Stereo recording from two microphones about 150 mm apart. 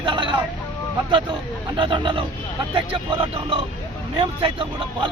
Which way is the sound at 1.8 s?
35° right (ahead or behind).